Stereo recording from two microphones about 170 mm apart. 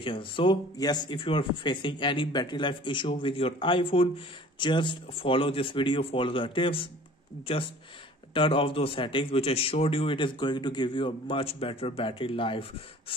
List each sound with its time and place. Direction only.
0.0 s speech: 30° left (ahead or behind)
8.3 s speech: 30° left (ahead or behind)